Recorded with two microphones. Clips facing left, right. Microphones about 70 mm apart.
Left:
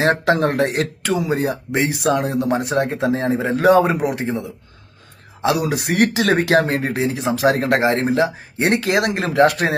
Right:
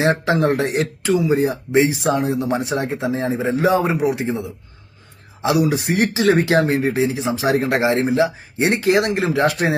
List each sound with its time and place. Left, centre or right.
0.0 s speech: left